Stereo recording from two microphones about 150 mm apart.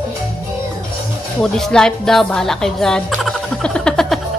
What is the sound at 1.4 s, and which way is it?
Speech, 5° left (ahead or behind).